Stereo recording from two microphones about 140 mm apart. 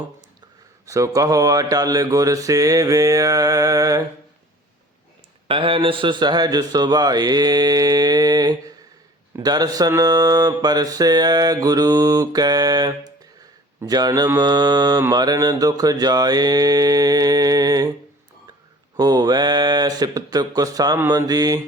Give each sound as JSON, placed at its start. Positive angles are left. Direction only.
{"t": 0.9, "sound": "mantra", "side_deg": -25}
{"t": 5.5, "sound": "mantra", "side_deg": -40}
{"t": 18.9, "sound": "mantra", "side_deg": -30}